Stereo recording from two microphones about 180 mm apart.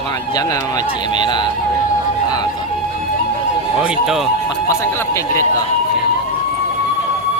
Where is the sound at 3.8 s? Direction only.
5° right (ahead or behind).